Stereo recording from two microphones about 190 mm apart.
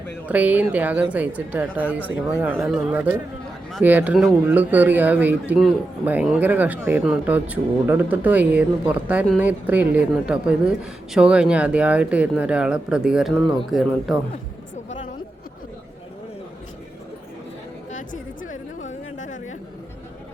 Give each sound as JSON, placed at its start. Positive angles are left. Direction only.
{"t": 0.3, "sound": "a woman's voice", "side_deg": -10}
{"t": 17.9, "sound": "chatter", "side_deg": 40}